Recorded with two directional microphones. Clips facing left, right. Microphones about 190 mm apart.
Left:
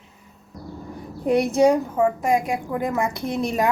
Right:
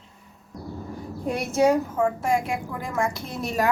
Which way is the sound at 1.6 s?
15° left (ahead or behind).